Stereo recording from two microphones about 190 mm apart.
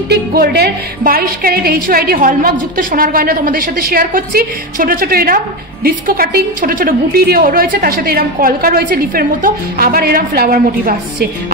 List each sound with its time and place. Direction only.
0.1 s a woman's voice: 55° right (ahead or behind)